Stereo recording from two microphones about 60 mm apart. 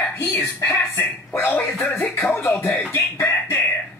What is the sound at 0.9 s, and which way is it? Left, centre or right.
Speech, left.